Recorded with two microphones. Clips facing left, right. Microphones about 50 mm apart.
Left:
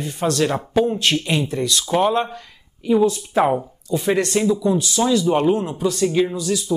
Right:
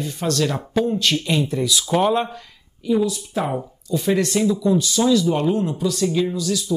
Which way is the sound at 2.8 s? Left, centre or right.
Left.